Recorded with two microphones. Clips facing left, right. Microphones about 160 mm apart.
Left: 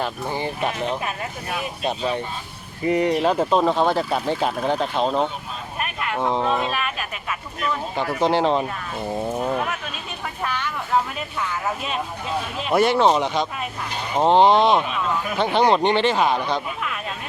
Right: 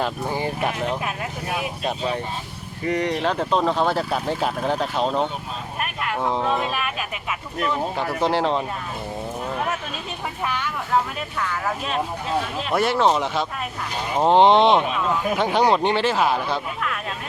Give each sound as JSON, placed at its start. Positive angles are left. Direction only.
{"t": 0.0, "sound": "speech", "side_deg": -10}
{"t": 10.4, "sound": "speech", "side_deg": -10}
{"t": 10.9, "sound": "speech", "side_deg": 5}
{"t": 14.3, "sound": "speech", "side_deg": -20}
{"t": 15.4, "sound": "speech", "side_deg": -10}